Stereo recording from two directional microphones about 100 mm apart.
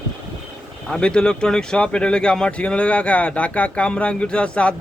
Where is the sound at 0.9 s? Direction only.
10° left (ahead or behind).